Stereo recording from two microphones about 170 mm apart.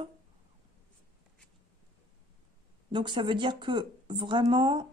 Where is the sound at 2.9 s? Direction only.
25° right (ahead or behind).